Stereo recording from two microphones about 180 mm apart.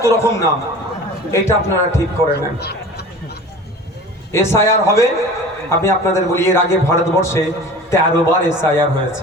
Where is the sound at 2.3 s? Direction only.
65° left (ahead or behind).